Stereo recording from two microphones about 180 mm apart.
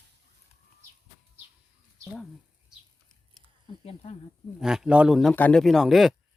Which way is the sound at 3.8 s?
35° left (ahead or behind).